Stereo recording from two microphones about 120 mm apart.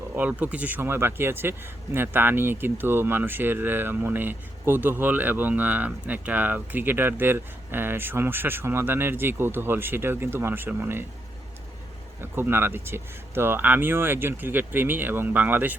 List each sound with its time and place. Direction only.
0.2 s speech: 15° right (ahead or behind)
12.2 s speech: 20° right (ahead or behind)